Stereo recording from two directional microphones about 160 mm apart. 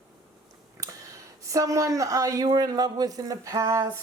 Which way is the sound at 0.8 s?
20° right (ahead or behind).